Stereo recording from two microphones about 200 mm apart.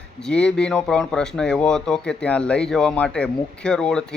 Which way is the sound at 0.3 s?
5° left (ahead or behind).